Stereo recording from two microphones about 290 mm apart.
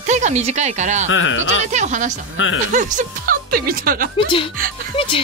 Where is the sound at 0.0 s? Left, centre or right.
Right.